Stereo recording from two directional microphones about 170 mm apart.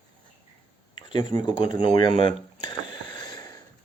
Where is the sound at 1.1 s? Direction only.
25° left (ahead or behind).